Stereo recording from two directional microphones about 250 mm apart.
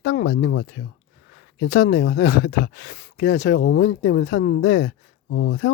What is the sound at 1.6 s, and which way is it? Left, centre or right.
Speech, left.